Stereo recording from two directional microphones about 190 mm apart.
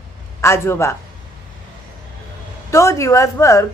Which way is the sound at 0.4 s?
15° left (ahead or behind).